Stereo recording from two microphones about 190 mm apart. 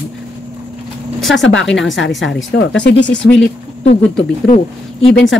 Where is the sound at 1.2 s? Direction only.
Centre (ahead or behind).